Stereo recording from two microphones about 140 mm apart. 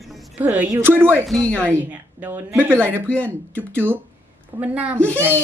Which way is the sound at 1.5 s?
15° right (ahead or behind).